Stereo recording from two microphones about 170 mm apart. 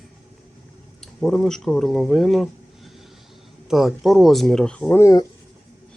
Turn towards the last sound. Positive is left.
turn(degrees=15)  # may be behind; listen again after turning